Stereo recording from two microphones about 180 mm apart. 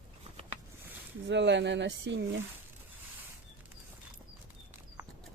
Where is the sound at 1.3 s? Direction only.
75° right (ahead or behind).